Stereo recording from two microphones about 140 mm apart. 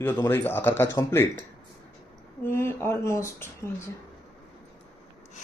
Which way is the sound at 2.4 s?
15° left (ahead or behind).